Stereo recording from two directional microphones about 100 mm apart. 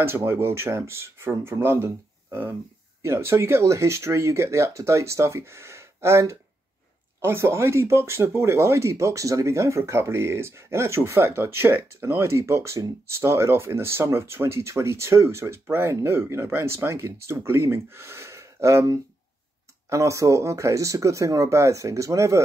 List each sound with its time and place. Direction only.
0.0 s speech: 25° right (ahead or behind)
3.0 s speech: 25° right (ahead or behind)